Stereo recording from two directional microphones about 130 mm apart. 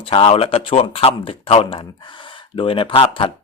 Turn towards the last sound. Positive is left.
turn(degrees=40)  # may be behind; listen again after turning